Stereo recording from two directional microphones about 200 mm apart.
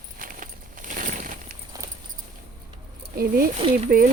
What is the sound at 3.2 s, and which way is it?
Speech, 45° right (ahead or behind).